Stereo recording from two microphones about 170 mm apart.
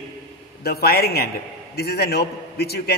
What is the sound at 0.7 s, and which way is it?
A man's voice, 65° left (ahead or behind).